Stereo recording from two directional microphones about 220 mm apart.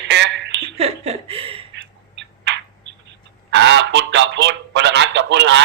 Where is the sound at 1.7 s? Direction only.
55° right (ahead or behind).